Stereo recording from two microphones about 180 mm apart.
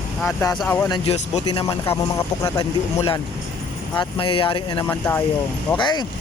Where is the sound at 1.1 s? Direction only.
35° left (ahead or behind).